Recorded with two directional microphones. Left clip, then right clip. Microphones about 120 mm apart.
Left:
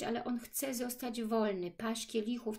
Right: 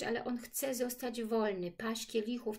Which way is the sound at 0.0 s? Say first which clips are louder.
Right 1 dB; 35° left (ahead or behind).